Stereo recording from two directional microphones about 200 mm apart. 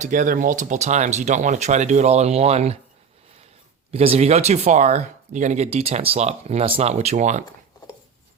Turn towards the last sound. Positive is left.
turn(degrees=-35)  # may be behind; listen again after turning